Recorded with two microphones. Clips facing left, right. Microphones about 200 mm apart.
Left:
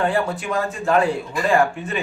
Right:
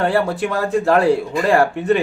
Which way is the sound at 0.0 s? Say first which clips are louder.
Right 4 dB; 70° right (ahead or behind).